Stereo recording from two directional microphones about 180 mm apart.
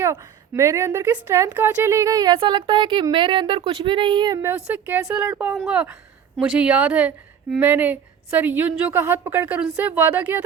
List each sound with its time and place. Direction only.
0.0 s a woman's voice: 15° right (ahead or behind)
4.4 s a woman's voice: 10° right (ahead or behind)